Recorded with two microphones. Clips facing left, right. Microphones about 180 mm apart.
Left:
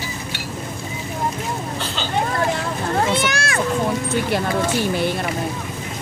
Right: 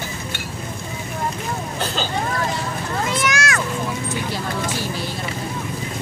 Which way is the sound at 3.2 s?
30° left (ahead or behind).